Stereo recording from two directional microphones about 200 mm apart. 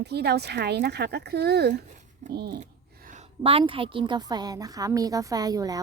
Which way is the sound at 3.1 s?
30° right (ahead or behind).